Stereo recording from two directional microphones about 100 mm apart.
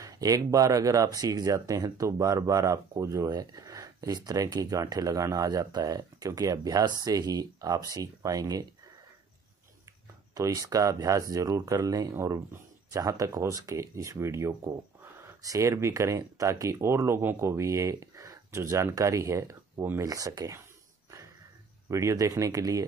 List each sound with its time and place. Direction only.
0.0 s speech: 35° right (ahead or behind)
10.3 s speech: 35° right (ahead or behind)
21.8 s speech: 30° right (ahead or behind)